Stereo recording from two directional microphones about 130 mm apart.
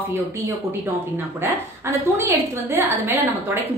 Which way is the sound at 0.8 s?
20° right (ahead or behind).